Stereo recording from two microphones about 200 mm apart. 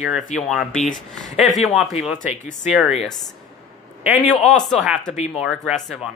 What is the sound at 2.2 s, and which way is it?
Speech, 35° left (ahead or behind).